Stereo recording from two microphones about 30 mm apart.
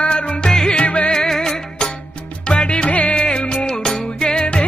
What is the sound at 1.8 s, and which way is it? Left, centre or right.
Music, left.